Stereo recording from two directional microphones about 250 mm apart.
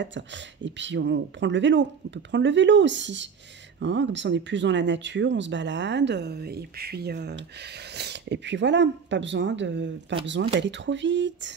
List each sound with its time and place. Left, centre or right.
0.0 s speech: right